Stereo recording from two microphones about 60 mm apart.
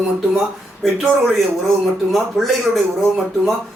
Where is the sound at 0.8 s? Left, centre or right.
Centre.